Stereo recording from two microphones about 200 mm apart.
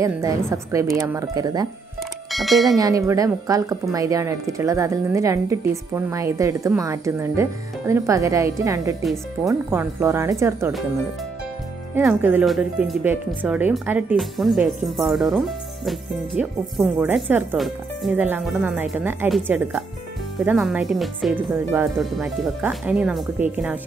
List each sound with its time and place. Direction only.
0.0 s speech: 15° right (ahead or behind)
2.3 s speech: centre (ahead or behind)
2.8 s speech: 15° right (ahead or behind)
9.0 s speech: centre (ahead or behind)
9.5 s speech: 10° right (ahead or behind)
11.9 s speech: 5° right (ahead or behind)